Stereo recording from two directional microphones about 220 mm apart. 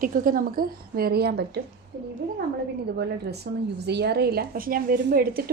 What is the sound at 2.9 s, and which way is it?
Speech, 50° right (ahead or behind).